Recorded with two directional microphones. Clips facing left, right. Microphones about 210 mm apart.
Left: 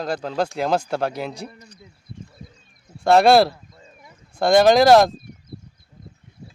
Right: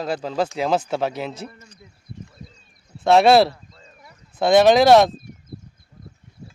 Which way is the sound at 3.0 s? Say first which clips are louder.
Even; centre (ahead or behind).